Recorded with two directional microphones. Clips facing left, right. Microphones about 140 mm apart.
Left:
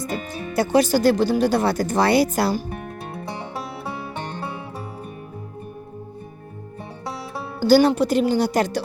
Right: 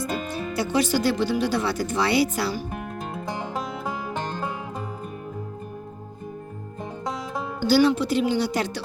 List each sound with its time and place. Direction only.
0.5 s speech: 45° left (ahead or behind)
7.7 s speech: 45° left (ahead or behind)